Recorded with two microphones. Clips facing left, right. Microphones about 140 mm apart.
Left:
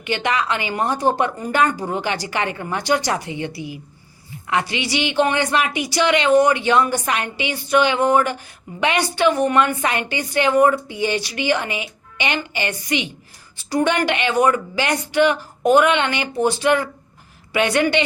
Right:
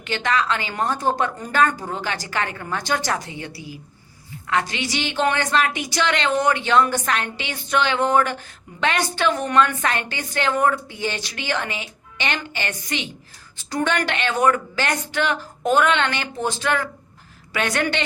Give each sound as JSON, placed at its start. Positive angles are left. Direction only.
{"t": 0.0, "sound": "a woman's voice", "side_deg": 15}